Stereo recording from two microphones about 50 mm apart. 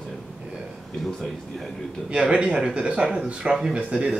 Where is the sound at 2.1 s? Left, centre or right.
Centre.